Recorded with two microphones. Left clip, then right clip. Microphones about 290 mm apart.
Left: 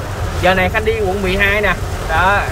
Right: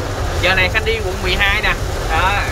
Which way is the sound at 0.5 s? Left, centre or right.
Centre.